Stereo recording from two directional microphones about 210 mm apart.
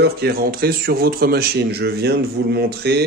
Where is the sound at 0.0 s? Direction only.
50° right (ahead or behind).